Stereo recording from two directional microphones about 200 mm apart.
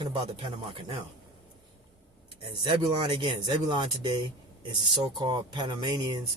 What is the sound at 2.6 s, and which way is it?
Speech, 25° right (ahead or behind).